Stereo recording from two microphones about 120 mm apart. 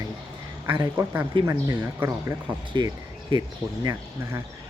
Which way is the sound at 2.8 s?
35° right (ahead or behind).